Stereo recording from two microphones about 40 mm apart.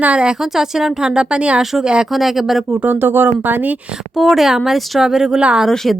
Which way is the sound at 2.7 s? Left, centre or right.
Right.